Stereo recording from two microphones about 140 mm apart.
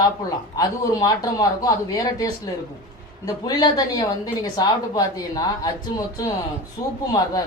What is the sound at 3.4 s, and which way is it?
Speech, 30° left (ahead or behind).